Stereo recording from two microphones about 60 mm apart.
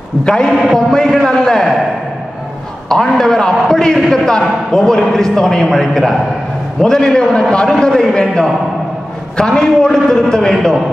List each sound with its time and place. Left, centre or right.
0.2 s a man's voice: centre
0.5 s a sound: centre
0.7 s a man's voice: centre
2.9 s a man's voice: centre